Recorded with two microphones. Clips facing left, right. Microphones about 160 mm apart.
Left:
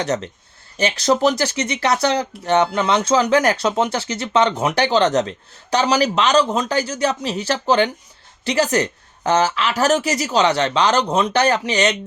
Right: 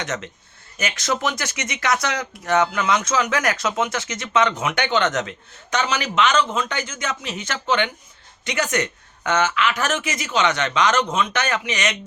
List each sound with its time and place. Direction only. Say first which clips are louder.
0.0 s speech: left 7 dB; 35° left (ahead or behind)